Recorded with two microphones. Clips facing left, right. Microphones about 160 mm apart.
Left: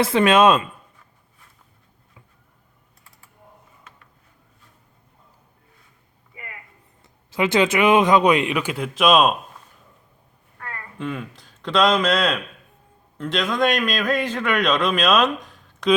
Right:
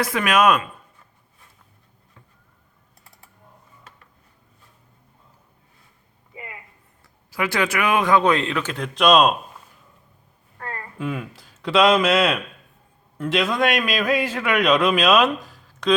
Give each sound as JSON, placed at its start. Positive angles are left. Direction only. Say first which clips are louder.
{"t": 0.0, "sound": "speech", "louder": "left 4 dB", "side_deg": 25}
{"t": 7.0, "sound": "speech", "louder": "left 4 dB", "side_deg": 20}
{"t": 10.6, "sound": "a sound", "louder": "right 3 dB", "side_deg": -30}
{"t": 10.9, "sound": "a man's voice", "louder": "even", "side_deg": -5}